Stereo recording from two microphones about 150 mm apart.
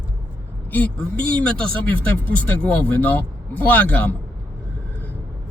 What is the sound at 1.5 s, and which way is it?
Speech, 10° left (ahead or behind).